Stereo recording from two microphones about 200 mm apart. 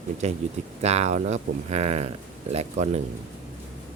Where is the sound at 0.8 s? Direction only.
35° right (ahead or behind).